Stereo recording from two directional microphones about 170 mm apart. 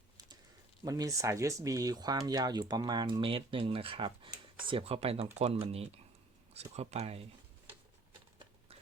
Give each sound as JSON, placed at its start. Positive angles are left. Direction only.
{"t": 0.9, "sound": "speech", "side_deg": -20}